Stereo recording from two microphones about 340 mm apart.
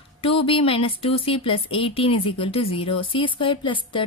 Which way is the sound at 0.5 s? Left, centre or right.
Centre.